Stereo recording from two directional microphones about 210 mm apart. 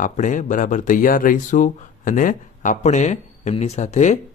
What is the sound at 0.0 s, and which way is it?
Speech, 35° left (ahead or behind).